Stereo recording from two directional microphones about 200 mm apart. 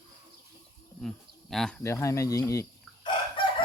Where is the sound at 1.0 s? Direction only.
Centre (ahead or behind).